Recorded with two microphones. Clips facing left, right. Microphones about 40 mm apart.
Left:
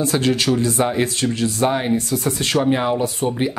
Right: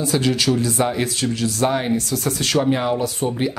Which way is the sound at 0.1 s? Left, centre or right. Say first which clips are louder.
Left 1 dB; left.